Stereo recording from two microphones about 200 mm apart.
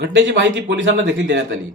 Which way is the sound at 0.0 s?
65° right (ahead or behind).